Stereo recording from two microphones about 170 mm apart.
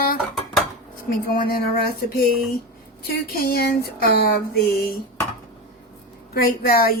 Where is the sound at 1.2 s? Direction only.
60° left (ahead or behind).